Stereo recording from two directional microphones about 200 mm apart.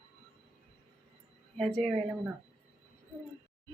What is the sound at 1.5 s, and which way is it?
Speech, centre (ahead or behind).